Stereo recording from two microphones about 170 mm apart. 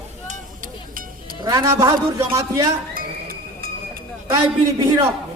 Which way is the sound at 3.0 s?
60° right (ahead or behind).